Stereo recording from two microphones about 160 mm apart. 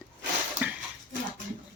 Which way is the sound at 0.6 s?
10° right (ahead or behind).